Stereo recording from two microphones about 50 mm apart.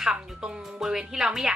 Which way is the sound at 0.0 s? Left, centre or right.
Centre.